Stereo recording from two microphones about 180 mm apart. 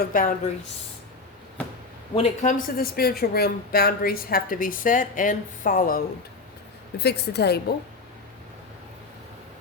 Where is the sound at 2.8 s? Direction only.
55° left (ahead or behind).